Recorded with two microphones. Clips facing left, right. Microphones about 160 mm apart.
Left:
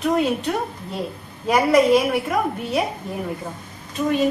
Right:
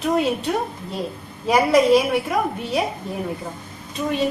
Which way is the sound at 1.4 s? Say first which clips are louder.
Even; centre (ahead or behind).